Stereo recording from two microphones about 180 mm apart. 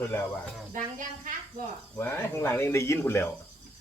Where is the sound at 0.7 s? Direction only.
45° right (ahead or behind).